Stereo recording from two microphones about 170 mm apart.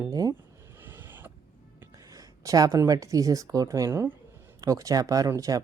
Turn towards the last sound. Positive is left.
turn(degrees=-20)  # may be behind; listen again after turning